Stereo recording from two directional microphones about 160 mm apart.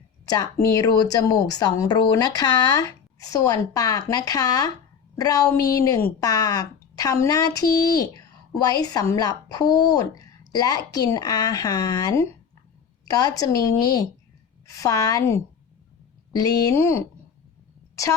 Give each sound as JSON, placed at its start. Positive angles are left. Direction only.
{"t": 0.3, "sound": "speech", "side_deg": 25}